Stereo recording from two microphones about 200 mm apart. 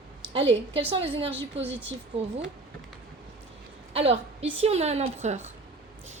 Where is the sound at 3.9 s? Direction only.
30° right (ahead or behind).